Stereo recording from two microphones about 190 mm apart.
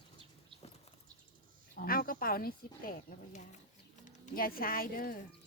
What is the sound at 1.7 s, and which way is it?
Speech, 50° left (ahead or behind).